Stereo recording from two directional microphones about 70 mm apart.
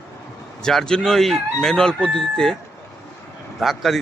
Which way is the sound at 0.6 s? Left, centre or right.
Centre.